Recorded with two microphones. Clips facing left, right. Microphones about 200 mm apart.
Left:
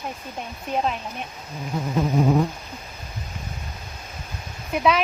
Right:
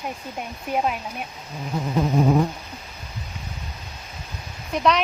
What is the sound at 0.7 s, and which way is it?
Speech, 10° right (ahead or behind).